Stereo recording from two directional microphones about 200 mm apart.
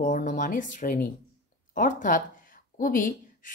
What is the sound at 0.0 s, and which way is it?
Speech, 40° left (ahead or behind).